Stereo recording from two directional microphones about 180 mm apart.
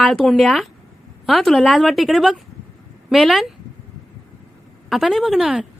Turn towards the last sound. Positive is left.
turn(degrees=0)  # may be behind; listen again after turning